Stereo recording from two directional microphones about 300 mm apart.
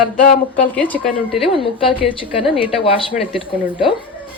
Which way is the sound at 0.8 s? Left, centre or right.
Centre.